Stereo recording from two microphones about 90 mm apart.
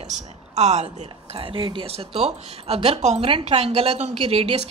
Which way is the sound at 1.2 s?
90° right.